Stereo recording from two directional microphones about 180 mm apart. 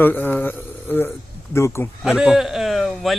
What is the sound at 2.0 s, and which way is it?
A man's voice, 5° right (ahead or behind).